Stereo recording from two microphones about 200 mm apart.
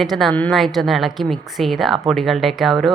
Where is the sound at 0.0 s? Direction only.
Centre (ahead or behind).